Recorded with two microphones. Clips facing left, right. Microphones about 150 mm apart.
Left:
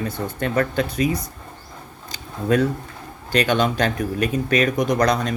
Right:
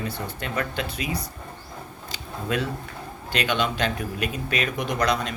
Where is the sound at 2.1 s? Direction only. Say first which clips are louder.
Left 8 dB; 40° left (ahead or behind).